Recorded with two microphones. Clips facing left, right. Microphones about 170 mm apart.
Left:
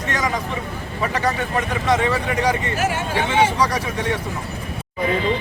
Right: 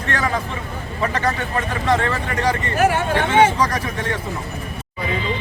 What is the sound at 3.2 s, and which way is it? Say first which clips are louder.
Speech: right 1 dB; 10° left (ahead or behind).